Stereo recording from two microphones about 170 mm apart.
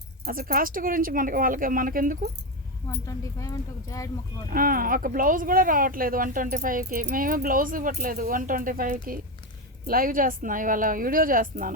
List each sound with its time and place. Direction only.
0.3 s speech: 55° right (ahead or behind)
3.1 s speech: 20° left (ahead or behind)
4.4 s speech: 55° right (ahead or behind)